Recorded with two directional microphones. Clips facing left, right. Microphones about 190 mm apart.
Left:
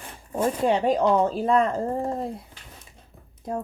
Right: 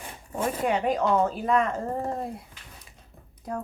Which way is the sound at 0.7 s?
30° left (ahead or behind).